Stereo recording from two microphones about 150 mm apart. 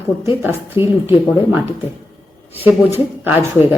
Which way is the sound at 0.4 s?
15° right (ahead or behind).